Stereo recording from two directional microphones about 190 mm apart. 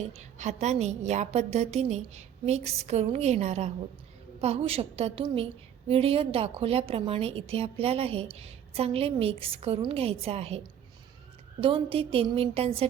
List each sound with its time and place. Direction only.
0.1 s a woman's voice: 35° right (ahead or behind)